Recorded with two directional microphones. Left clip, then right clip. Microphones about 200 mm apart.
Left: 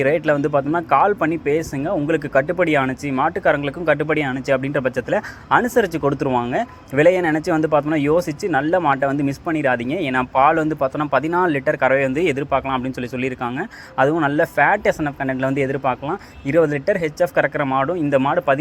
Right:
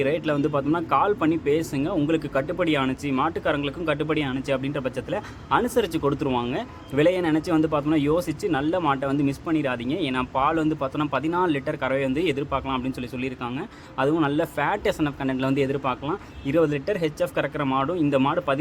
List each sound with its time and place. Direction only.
0.0 s speech: 20° left (ahead or behind)